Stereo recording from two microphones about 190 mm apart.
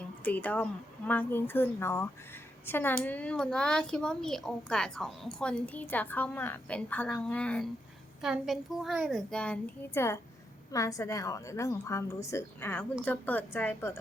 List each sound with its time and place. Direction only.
0.3 s a woman's voice: 10° left (ahead or behind)